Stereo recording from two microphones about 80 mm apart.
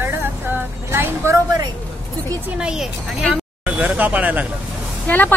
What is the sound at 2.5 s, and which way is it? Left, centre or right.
Speech, centre.